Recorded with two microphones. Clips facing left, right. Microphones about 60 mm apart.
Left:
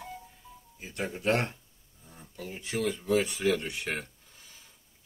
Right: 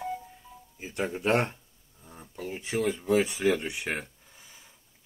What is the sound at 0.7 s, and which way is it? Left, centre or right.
Speech, right.